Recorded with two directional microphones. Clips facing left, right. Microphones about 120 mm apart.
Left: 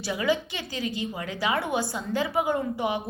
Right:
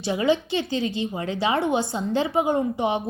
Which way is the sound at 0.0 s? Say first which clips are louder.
Right 4 dB; 25° right (ahead or behind).